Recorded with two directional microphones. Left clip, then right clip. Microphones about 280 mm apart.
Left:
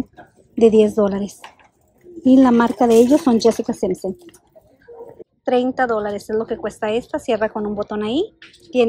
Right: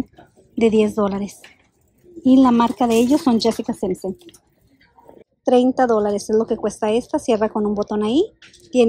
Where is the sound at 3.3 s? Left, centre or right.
Right.